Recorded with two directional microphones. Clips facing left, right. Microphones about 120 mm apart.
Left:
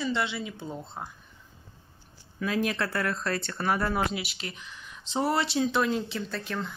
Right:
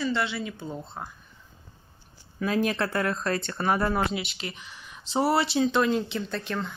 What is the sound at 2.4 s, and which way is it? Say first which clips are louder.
Speech: right 3 dB; 35° right (ahead or behind).